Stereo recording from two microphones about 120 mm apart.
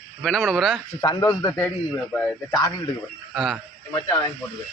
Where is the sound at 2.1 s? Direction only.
5° left (ahead or behind).